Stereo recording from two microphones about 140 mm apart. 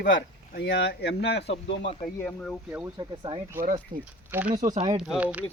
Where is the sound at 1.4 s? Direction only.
45° left (ahead or behind).